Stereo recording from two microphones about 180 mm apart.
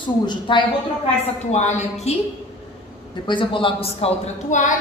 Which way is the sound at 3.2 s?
25° left (ahead or behind).